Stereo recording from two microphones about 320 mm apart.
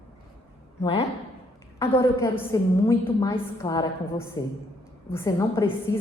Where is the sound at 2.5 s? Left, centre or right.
Centre.